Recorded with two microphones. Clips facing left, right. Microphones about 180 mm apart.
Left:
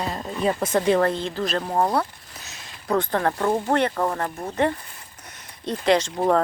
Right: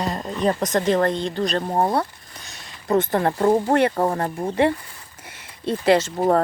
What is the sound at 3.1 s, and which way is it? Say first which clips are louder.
Speech: right 2 dB; 15° right (ahead or behind).